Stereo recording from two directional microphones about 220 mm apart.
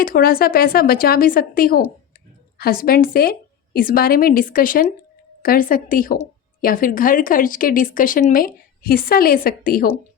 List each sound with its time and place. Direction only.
0.0 s speech: 40° left (ahead or behind)